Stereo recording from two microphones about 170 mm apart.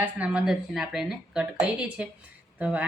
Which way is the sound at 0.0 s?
5° right (ahead or behind).